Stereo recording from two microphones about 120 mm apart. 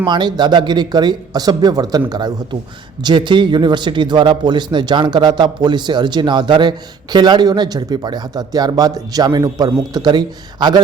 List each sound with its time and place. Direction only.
0.0 s speech: 40° right (ahead or behind)